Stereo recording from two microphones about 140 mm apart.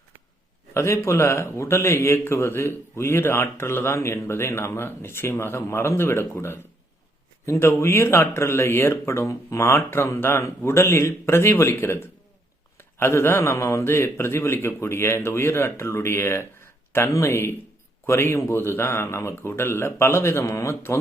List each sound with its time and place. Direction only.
0.7 s a man's voice: 20° left (ahead or behind)